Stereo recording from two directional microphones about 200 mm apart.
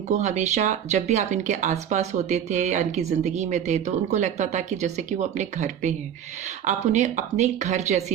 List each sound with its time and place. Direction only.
0.1 s speech: 35° right (ahead or behind)